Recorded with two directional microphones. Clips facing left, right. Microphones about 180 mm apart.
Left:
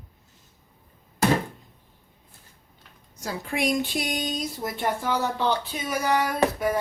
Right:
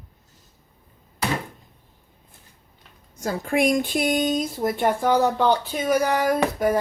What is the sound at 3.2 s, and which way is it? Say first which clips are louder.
Speech: right 6 dB; 50° right (ahead or behind).